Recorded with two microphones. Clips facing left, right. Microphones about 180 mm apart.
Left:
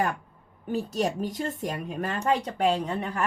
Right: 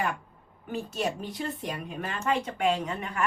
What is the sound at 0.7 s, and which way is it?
A woman's voice, 40° left (ahead or behind).